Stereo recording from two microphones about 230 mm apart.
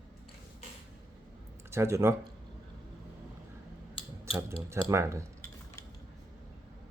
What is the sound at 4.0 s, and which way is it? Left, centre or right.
Scissors, left.